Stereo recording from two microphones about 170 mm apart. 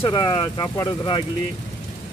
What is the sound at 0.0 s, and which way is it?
Speech, 25° left (ahead or behind).